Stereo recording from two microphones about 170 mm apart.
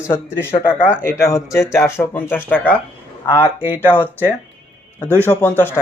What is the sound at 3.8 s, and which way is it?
Speech, 10° left (ahead or behind).